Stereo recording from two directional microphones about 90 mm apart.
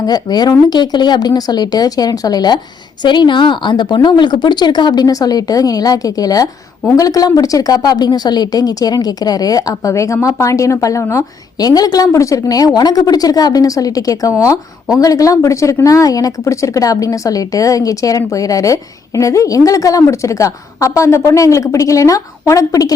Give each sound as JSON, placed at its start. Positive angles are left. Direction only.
{"t": 0.0, "sound": "a woman's voice", "side_deg": 45}